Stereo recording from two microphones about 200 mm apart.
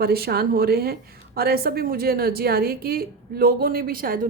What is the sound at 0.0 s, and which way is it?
A woman's voice, 50° right (ahead or behind).